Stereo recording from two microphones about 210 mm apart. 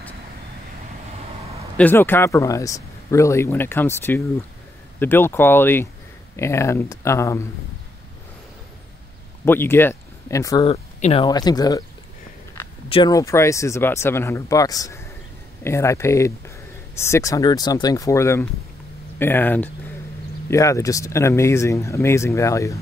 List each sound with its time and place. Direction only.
1.8 s speech: 10° left (ahead or behind)
4.9 s speech: 10° left (ahead or behind)
9.4 s speech: 10° left (ahead or behind)
12.9 s speech: 20° left (ahead or behind)